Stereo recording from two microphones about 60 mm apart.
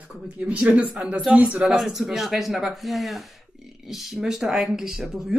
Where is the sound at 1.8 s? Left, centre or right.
Centre.